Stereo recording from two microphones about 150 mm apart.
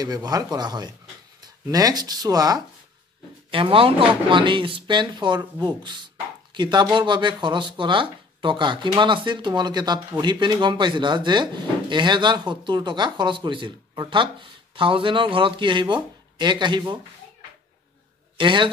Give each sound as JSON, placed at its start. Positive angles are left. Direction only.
{"t": 0.0, "sound": "speech", "side_deg": -25}
{"t": 3.4, "sound": "speech", "side_deg": -35}
{"t": 18.4, "sound": "speech", "side_deg": -30}